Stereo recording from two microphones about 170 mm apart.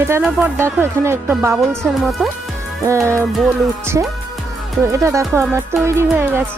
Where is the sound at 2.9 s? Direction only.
15° right (ahead or behind).